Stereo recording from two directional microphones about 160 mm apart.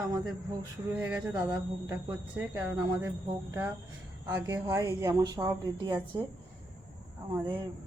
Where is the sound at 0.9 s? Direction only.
20° right (ahead or behind).